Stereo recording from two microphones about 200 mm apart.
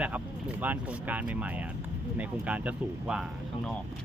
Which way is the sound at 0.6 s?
10° right (ahead or behind).